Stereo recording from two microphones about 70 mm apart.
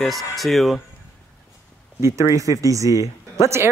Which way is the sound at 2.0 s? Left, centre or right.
Right.